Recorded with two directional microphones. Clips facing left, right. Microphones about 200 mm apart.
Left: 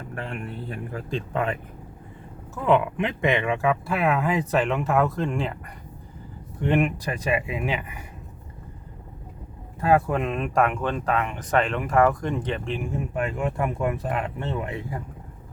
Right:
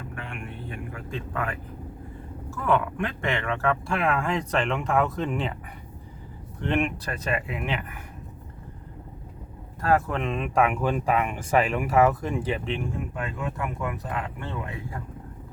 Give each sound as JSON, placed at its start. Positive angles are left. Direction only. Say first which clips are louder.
{"t": 0.1, "sound": "speech", "louder": "left 4 dB", "side_deg": 40}
{"t": 9.8, "sound": "speech", "louder": "left 3 dB", "side_deg": 10}
{"t": 12.9, "sound": "speech", "louder": "left 5 dB", "side_deg": 25}